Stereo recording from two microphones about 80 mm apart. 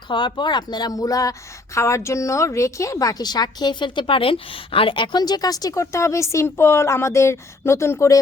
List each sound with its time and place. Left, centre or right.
0.1 s speech: left